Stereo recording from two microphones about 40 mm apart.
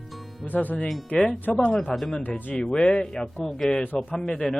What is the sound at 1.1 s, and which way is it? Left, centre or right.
Speech, left.